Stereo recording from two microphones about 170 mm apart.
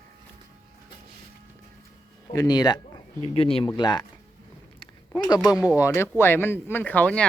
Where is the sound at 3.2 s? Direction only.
35° left (ahead or behind).